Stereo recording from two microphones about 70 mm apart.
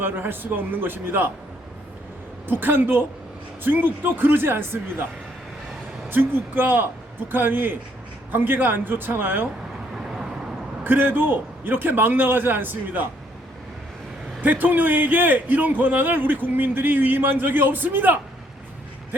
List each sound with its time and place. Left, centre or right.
0.0 s speech: right
2.5 s speech: right
6.1 s speech: right
10.8 s speech: right
14.4 s speech: right